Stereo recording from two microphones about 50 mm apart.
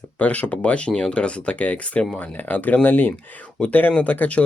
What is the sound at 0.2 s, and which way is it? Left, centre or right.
Speech, left.